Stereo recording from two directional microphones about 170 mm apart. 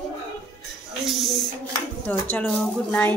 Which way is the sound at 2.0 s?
10° left (ahead or behind).